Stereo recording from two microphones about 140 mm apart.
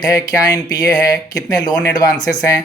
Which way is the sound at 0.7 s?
25° left (ahead or behind).